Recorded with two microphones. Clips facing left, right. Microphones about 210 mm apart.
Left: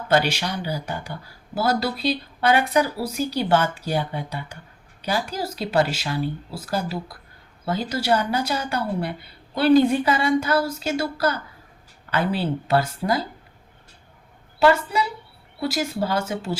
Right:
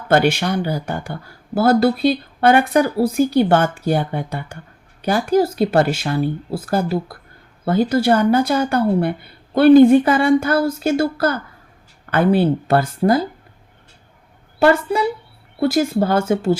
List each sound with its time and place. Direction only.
0.1 s speech: 50° right (ahead or behind)
14.6 s speech: 50° right (ahead or behind)